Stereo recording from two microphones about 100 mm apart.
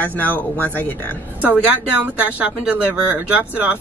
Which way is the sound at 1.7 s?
15° right (ahead or behind).